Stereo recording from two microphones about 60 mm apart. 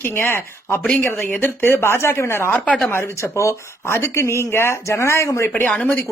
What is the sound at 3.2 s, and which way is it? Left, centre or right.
Speech, left.